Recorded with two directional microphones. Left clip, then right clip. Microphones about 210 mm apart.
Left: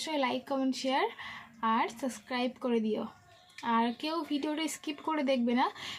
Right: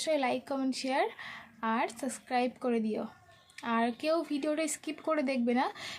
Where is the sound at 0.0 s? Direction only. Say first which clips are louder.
Right 2 dB; 15° right (ahead or behind).